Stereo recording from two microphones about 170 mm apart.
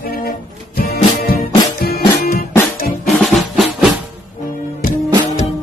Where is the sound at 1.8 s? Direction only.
65° left (ahead or behind).